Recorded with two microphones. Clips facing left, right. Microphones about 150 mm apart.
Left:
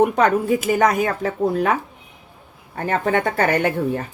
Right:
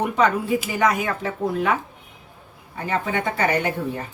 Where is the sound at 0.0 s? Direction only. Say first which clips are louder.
Left 4 dB; 50° left (ahead or behind).